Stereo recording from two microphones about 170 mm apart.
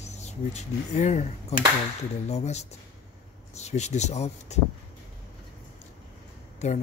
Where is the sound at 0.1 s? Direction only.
40° left (ahead or behind).